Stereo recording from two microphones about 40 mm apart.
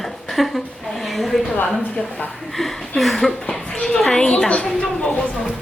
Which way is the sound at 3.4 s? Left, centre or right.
Centre.